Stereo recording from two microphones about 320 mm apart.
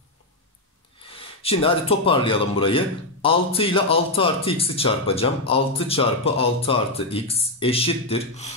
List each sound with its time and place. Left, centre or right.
1.1 s a man's voice: centre